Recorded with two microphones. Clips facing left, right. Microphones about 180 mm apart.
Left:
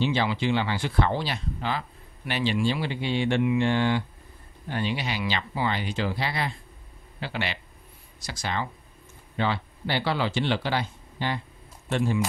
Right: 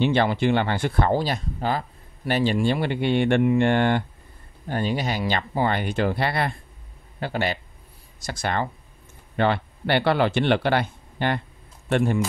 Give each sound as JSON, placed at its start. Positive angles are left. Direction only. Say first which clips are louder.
{"t": 0.0, "sound": "speech", "louder": "right 5 dB", "side_deg": -55}
{"t": 4.6, "sound": "a man's voice", "louder": "right 4 dB", "side_deg": -45}